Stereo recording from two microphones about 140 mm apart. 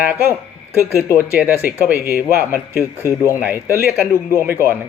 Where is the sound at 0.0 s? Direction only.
15° right (ahead or behind).